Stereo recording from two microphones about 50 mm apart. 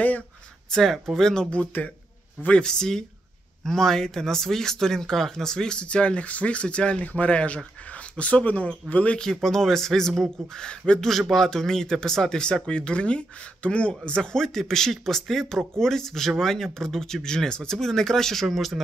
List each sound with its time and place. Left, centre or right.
0.7 s speech: centre
1.5 s speech: left
9.2 s speech: centre
11.1 s speech: centre